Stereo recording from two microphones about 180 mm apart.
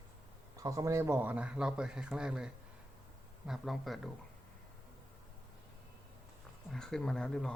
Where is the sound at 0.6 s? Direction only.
15° right (ahead or behind).